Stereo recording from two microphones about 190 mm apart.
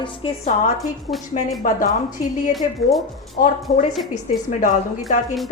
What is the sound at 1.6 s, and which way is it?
Speech, 45° left (ahead or behind).